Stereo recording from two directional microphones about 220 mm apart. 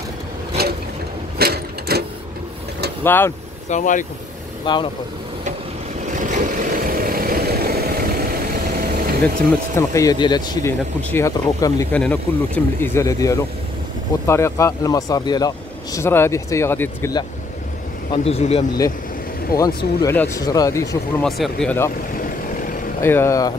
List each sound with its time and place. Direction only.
1.4 s sewing machine: 45° right (ahead or behind)
3.0 s speech: 10° left (ahead or behind)
3.6 s speech: 35° left (ahead or behind)
4.7 s speech: 20° left (ahead or behind)
6.1 s vehicle: 35° right (ahead or behind)
9.8 s speech: 15° left (ahead or behind)
18.1 s speech: 25° left (ahead or behind)
19.5 s speech: 45° left (ahead or behind)
20.0 s speech: 15° left (ahead or behind)
21.2 s speech: centre (ahead or behind)
22.1 s vehicle: 40° left (ahead or behind)
23.0 s speech: 10° left (ahead or behind)